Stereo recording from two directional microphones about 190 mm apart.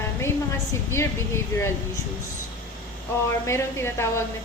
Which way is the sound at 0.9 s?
15° left (ahead or behind).